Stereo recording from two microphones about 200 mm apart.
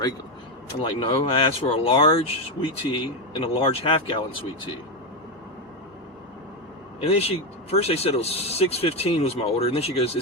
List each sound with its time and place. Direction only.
0.8 s speech: 25° left (ahead or behind)
7.0 s speech: 30° left (ahead or behind)